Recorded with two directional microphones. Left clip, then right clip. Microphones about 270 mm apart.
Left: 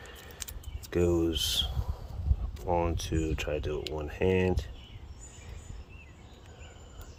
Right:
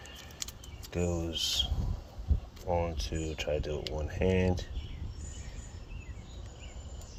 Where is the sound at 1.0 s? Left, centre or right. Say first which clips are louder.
Left 8 dB; left.